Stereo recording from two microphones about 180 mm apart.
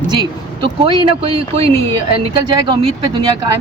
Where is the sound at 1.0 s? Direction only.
30° right (ahead or behind).